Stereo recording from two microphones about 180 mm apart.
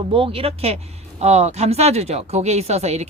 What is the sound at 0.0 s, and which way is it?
Speech, 30° right (ahead or behind).